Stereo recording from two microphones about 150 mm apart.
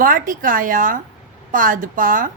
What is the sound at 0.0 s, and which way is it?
A woman's voice, 65° right (ahead or behind).